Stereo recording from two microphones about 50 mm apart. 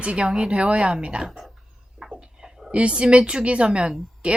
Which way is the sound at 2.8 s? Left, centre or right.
Right.